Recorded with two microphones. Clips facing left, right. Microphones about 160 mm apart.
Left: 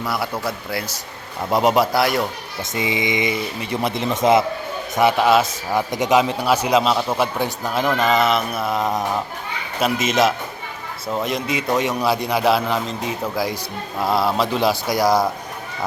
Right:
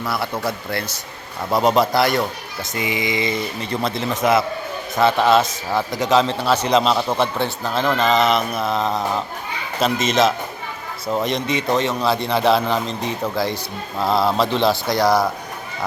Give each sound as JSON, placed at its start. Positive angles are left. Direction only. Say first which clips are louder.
{"t": 0.0, "sound": "a man's voice", "louder": "right 1 dB", "side_deg": 10}
{"t": 2.7, "sound": "a sound", "louder": "left 1 dB", "side_deg": 25}
{"t": 3.3, "sound": "a man's voice", "louder": "even", "side_deg": 10}
{"t": 4.9, "sound": "a man's voice", "louder": "even", "side_deg": 10}